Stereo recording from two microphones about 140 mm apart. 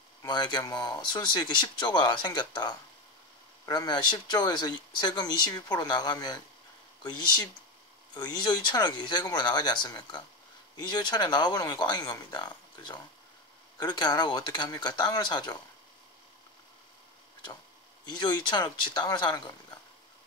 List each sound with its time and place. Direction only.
0.2 s speech: 30° left (ahead or behind)
18.0 s speech: 30° left (ahead or behind)